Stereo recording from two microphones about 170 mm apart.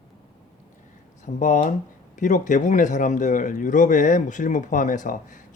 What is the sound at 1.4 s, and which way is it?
Speech, 50° left (ahead or behind).